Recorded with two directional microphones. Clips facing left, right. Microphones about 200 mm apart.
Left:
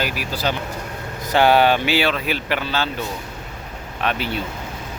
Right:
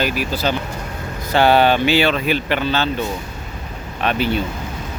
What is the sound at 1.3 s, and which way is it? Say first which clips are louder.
Speech: right 1 dB; 15° left (ahead or behind).